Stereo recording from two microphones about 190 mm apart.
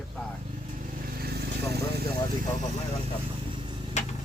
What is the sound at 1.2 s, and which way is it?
Vehicle, 55° right (ahead or behind).